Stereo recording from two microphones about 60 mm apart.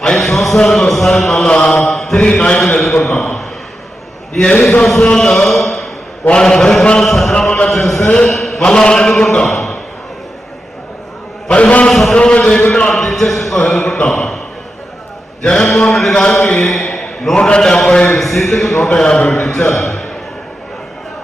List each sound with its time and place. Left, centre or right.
0.0 s a man's voice: centre
1.5 s mantra: centre
2.1 s a man's voice: centre
4.4 s a man's voice: centre
4.9 s a sound: centre
6.2 s a man's voice: centre
11.4 s a man's voice: centre
12.7 s a sound: centre
13.6 s speech: centre
15.4 s a man's voice: centre
18.2 s a man's voice: centre
18.9 s a man's voice: centre